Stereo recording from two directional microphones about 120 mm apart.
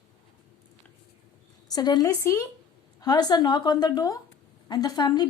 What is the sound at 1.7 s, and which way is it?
A woman's voice, 35° left (ahead or behind).